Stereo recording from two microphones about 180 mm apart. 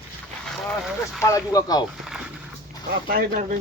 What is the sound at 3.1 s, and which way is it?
Speech, 50° right (ahead or behind).